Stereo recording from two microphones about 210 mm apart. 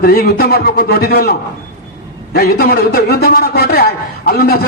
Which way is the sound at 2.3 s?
45° left (ahead or behind).